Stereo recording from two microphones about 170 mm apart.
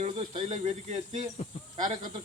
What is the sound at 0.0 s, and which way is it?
Speech, 40° right (ahead or behind).